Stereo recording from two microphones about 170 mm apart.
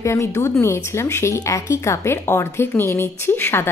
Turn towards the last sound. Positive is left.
turn(degrees=15)  # may be behind; listen again after turning